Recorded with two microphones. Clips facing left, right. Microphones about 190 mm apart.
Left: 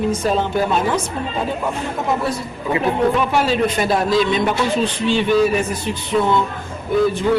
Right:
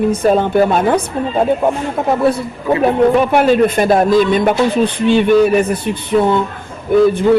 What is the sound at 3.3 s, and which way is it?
A man's voice, 55° right (ahead or behind).